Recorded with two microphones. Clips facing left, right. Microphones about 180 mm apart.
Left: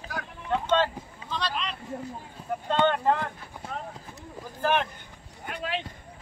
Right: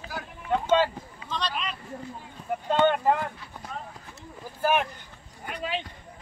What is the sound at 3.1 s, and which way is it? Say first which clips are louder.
Speech: right 1 dB; 10° right (ahead or behind).